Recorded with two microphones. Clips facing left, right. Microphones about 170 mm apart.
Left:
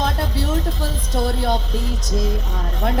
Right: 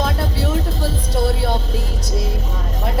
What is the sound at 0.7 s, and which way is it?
Music, 35° right (ahead or behind).